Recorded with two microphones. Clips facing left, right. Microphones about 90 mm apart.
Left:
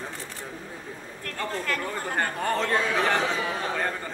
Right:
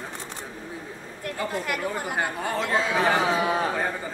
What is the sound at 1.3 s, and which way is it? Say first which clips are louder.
Speech: right 2 dB; 10° right (ahead or behind).